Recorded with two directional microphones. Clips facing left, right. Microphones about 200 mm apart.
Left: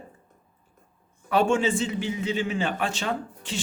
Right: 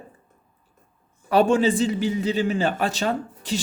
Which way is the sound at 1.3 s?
35° right (ahead or behind).